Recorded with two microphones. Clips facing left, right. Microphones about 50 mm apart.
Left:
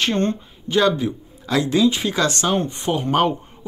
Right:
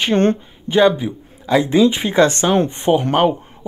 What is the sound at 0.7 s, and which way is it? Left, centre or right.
A man's voice, centre.